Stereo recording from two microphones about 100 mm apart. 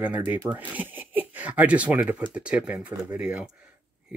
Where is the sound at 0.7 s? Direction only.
15° right (ahead or behind).